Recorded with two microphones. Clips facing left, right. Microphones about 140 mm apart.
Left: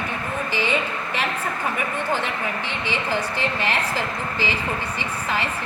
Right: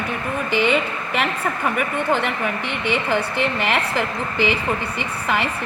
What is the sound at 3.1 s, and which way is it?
A woman's voice, 60° right (ahead or behind).